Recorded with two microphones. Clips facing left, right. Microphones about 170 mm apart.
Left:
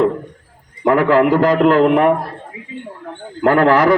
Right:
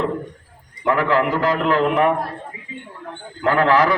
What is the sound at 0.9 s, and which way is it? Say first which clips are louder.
A man's voice: left 6 dB; 50° left (ahead or behind).